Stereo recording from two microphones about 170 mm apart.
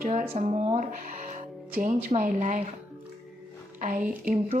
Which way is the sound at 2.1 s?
45° right (ahead or behind).